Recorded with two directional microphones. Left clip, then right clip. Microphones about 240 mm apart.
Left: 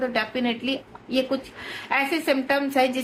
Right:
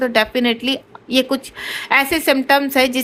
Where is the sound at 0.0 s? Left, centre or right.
Right.